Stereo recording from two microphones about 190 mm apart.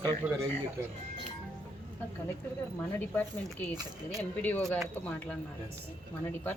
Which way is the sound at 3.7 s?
20° right (ahead or behind).